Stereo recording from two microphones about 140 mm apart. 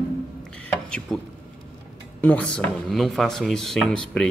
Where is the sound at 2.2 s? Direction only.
10° left (ahead or behind).